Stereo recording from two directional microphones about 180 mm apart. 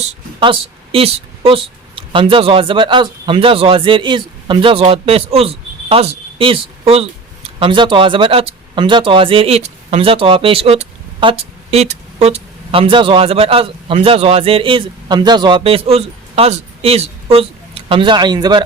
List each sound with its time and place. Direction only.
0.3 s a woman's voice: 30° right (ahead or behind)